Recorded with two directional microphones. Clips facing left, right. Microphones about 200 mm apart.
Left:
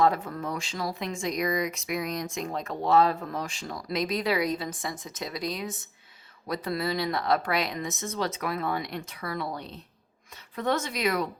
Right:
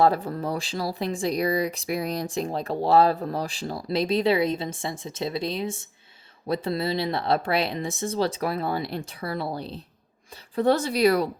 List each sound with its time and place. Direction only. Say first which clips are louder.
0.0 s speech: right 3 dB; 35° right (ahead or behind)